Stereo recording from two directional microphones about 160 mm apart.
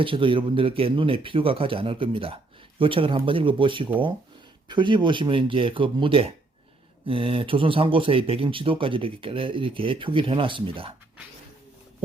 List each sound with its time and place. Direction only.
0.0 s speech: 30° right (ahead or behind)